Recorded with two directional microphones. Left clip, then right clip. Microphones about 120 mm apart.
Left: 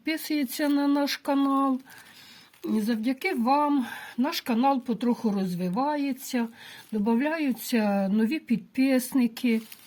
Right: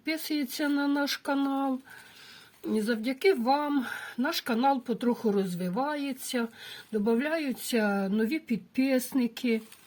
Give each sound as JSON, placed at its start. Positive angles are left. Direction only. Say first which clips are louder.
{"t": 0.0, "sound": "speech", "louder": "left 3 dB", "side_deg": 20}
{"t": 2.7, "sound": "speech", "louder": "left 1 dB", "side_deg": 15}